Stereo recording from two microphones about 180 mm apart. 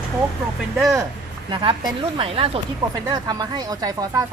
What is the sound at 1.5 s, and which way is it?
Speech, 25° right (ahead or behind).